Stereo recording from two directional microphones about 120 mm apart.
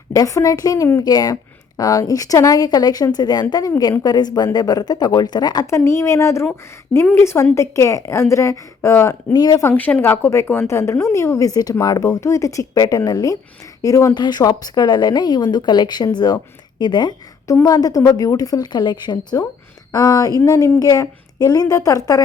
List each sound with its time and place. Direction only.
0.1 s a woman's voice: 25° left (ahead or behind)
9.3 s speech: 35° left (ahead or behind)
9.6 s a woman's voice: 15° left (ahead or behind); by 22.2 s 30° left (ahead or behind)